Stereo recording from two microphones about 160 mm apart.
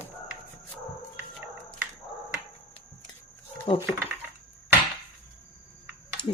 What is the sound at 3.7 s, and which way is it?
Speech, 35° left (ahead or behind).